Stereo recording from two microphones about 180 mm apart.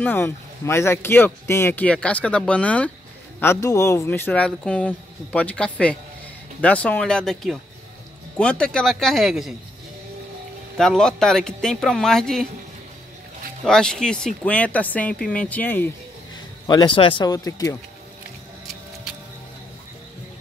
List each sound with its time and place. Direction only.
0.0 s speech: 10° left (ahead or behind)
10.8 s speech: 5° left (ahead or behind)
13.7 s speech: 5° left (ahead or behind)
16.6 s speech: 25° left (ahead or behind)